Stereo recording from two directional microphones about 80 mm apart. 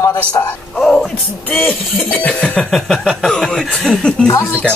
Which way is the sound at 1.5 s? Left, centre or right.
Centre.